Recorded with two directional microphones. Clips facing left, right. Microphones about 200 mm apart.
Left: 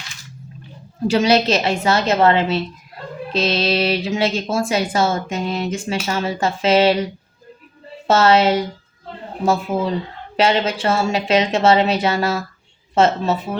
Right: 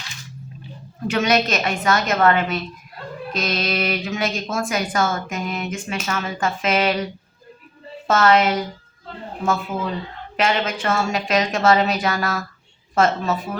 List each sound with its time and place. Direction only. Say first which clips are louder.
1.1 s a woman's voice: left 4 dB; 30° left (ahead or behind)
8.0 s a woman's voice: left 3 dB; 30° left (ahead or behind)